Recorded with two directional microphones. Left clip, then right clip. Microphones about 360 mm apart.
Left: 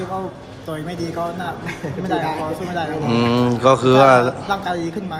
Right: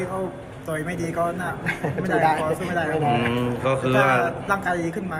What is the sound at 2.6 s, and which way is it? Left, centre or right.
Speech, centre.